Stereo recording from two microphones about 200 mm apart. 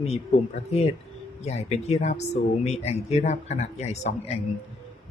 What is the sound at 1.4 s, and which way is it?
A man's voice, 35° left (ahead or behind).